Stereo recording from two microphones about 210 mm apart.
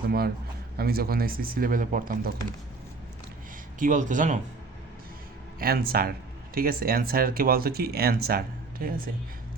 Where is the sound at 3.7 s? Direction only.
40° right (ahead or behind).